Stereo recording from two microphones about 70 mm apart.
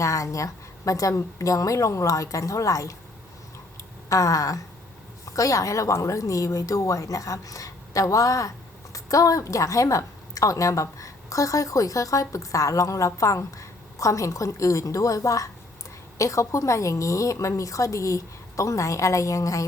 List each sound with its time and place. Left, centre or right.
0.0 s a woman's voice: left
3.8 s a sound: left
5.2 s a woman's voice: left